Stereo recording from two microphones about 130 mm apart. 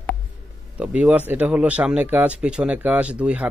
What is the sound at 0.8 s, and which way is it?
Speech, 10° right (ahead or behind).